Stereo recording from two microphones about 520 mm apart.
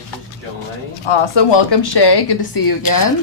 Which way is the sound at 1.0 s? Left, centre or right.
Left.